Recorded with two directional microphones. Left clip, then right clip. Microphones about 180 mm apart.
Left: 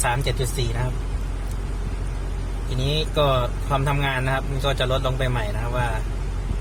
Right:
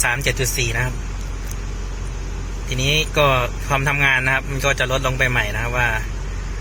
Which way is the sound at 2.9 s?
Centre (ahead or behind).